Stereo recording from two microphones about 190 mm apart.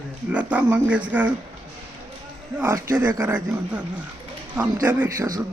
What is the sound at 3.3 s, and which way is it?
Speech, 5° right (ahead or behind).